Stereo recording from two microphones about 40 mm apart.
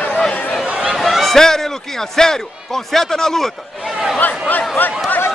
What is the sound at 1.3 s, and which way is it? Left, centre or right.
A man's voice, centre.